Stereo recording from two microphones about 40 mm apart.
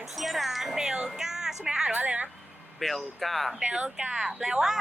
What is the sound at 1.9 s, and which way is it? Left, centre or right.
Speech, right.